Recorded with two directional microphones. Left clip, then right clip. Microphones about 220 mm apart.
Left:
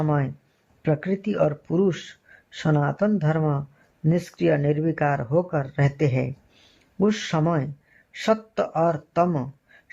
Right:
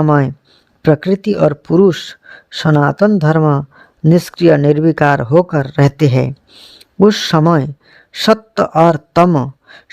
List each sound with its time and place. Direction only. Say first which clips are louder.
0.0 s a man's voice: right 13 dB; 45° right (ahead or behind)